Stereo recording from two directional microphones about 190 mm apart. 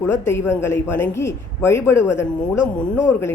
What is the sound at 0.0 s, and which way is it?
Speech, 15° left (ahead or behind).